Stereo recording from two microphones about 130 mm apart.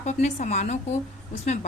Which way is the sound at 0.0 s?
65° left (ahead or behind).